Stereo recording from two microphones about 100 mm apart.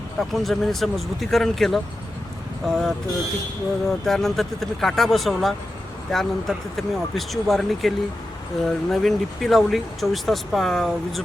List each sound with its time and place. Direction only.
0.2 s speech: centre (ahead or behind)